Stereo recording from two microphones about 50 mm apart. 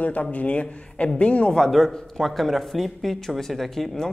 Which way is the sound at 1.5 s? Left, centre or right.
Centre.